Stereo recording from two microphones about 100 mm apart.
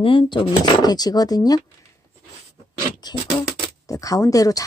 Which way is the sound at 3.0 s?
45° left (ahead or behind).